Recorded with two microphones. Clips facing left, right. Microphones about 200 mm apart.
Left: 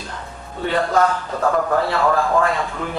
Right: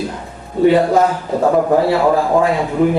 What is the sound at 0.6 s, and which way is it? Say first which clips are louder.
A man's voice: right 7 dB; 15° right (ahead or behind).